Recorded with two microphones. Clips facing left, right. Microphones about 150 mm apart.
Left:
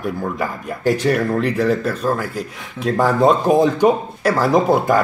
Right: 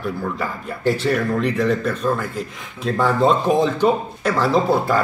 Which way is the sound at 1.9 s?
35° left (ahead or behind).